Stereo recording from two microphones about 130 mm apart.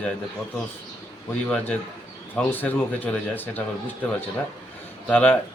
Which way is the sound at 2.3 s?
15° left (ahead or behind).